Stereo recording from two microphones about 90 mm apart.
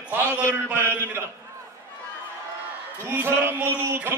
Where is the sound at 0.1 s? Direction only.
25° right (ahead or behind).